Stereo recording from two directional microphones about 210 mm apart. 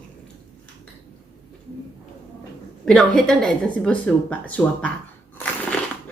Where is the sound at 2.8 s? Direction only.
Centre (ahead or behind).